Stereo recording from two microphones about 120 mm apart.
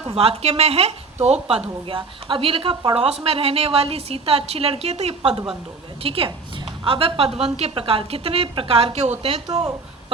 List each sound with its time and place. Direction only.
0.0 s a woman's voice: 55° right (ahead or behind)
1.9 s a woman's voice: 45° right (ahead or behind)